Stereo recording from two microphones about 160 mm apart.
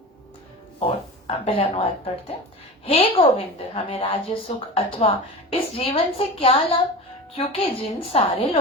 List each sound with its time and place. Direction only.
0.9 s a woman's voice: 35° left (ahead or behind)